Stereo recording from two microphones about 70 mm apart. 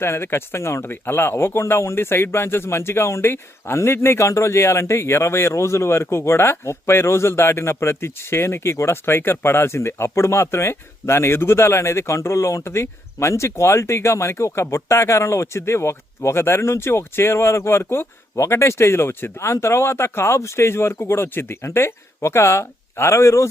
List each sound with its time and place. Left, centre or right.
0.0 s speech: left